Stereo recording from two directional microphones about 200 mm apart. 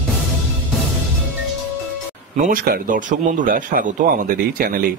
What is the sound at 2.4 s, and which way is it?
A man's voice, 50° right (ahead or behind).